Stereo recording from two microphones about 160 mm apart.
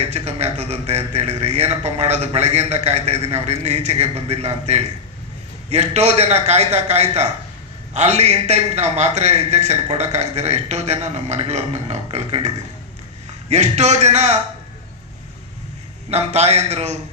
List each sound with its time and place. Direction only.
0.0 s a man's voice: 45° right (ahead or behind)
16.0 s a man's voice: 40° right (ahead or behind)